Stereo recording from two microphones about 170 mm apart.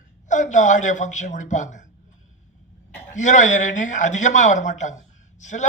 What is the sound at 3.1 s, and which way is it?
A man's voice, 45° left (ahead or behind).